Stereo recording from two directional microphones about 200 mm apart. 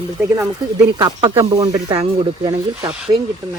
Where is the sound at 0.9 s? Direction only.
25° right (ahead or behind).